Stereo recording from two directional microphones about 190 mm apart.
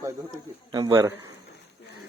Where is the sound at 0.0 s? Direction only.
15° right (ahead or behind).